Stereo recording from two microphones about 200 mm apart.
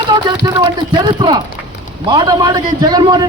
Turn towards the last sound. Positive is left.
turn(degrees=-20)  # may be behind; listen again after turning